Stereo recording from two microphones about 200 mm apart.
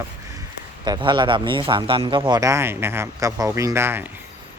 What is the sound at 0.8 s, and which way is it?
A man's voice, 20° right (ahead or behind).